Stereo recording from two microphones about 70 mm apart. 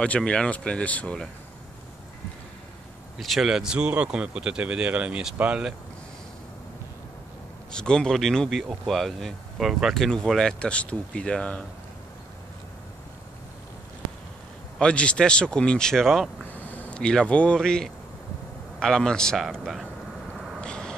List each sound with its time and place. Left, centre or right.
0.0 s speech: centre
3.2 s speech: centre
7.7 s speech: centre
14.8 s speech: centre
16.6 s a sound: left
17.0 s speech: centre
19.6 s speech: centre
20.6 s vehicle: centre